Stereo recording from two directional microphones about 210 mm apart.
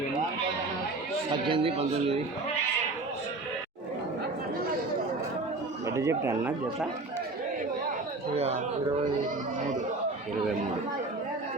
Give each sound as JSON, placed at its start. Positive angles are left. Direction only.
{"t": 1.5, "sound": "a man's voice", "side_deg": -25}
{"t": 5.9, "sound": "speech", "side_deg": -15}